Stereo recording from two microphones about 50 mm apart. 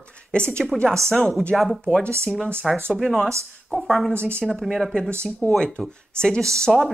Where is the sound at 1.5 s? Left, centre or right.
Centre.